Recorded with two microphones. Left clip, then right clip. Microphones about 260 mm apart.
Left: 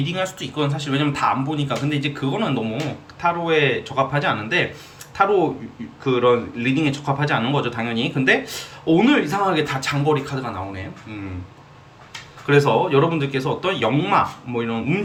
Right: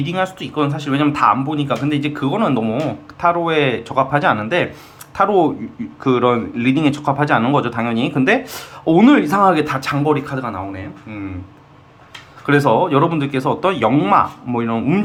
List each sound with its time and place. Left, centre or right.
0.0 s speech: centre
12.5 s speech: right